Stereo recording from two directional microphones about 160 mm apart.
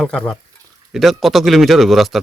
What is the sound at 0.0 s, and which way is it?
Speech, centre (ahead or behind).